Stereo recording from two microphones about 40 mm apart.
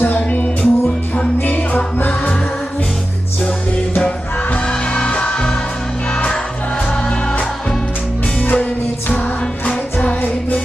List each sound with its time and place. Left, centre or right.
0.3 s music: left
0.6 s music: left
1.4 s music: left
4.9 s music: left
8.4 s music: left
9.6 s music: left